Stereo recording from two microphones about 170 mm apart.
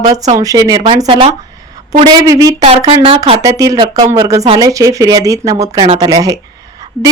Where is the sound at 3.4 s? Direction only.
20° right (ahead or behind).